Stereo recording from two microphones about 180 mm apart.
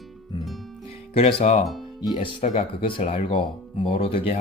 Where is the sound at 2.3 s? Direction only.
45° left (ahead or behind).